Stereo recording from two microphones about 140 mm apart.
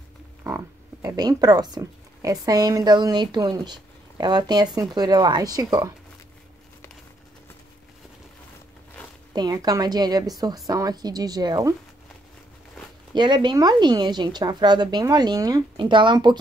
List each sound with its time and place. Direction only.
1.0 s a woman's voice: 30° right (ahead or behind)
9.3 s a woman's voice: 30° right (ahead or behind)
13.1 s speech: 30° right (ahead or behind)